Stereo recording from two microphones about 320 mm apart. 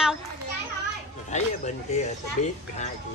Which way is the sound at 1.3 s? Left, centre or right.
Left.